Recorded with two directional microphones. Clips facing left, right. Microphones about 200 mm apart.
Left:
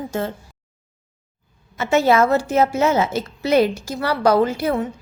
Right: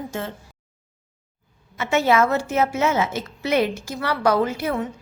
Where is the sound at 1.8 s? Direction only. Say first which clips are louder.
Left 3 dB; 40° left (ahead or behind).